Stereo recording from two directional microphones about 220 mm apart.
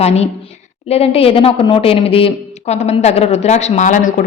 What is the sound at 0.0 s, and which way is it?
Speech, 30° left (ahead or behind).